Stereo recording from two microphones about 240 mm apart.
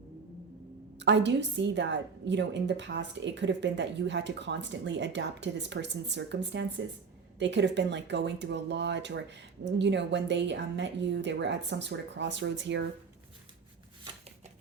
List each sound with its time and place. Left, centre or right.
0.9 s a woman's voice: right